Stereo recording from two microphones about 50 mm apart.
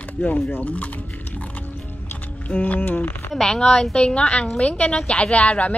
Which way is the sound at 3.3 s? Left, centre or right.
Centre.